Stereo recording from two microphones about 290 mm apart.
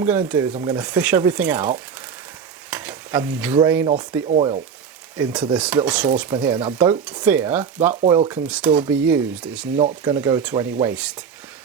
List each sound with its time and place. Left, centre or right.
0.0 s speech: centre
2.6 s stir: centre
3.8 s speech: centre
5.1 s speech: centre
7.0 s speech: centre
8.0 s speech: centre
8.3 s speech: centre
9.7 s speech: centre